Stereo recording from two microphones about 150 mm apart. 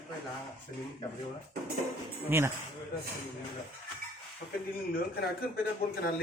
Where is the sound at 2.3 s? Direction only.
15° right (ahead or behind).